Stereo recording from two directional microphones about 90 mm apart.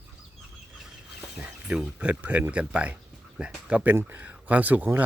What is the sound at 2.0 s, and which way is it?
Speech, 15° right (ahead or behind).